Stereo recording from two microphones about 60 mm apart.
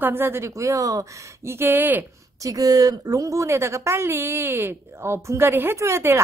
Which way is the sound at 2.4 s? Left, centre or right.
Right.